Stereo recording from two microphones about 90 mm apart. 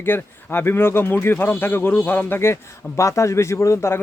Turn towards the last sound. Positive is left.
turn(degrees=30)  # may be behind; listen again after turning